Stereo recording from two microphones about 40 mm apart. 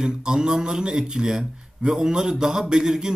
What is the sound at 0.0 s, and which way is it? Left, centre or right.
Speech, centre.